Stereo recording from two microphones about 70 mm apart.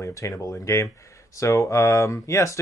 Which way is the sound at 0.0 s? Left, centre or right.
Left.